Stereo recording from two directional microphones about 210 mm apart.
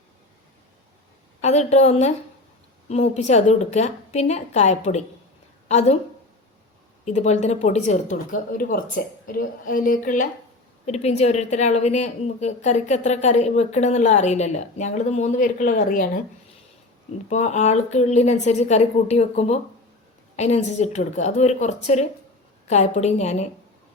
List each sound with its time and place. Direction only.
1.4 s a woman's voice: 30° left (ahead or behind)
7.0 s a woman's voice: 30° left (ahead or behind)
17.2 s a woman's voice: 35° left (ahead or behind)